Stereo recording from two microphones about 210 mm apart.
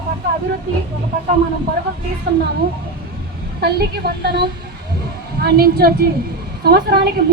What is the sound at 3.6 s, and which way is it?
A woman's voice, 50° right (ahead or behind).